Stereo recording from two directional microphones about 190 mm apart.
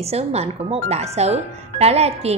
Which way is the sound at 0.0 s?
35° right (ahead or behind).